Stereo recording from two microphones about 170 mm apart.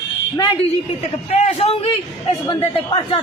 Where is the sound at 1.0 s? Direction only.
40° left (ahead or behind).